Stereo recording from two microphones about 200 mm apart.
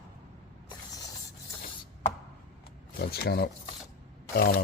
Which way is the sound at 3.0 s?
50° left (ahead or behind).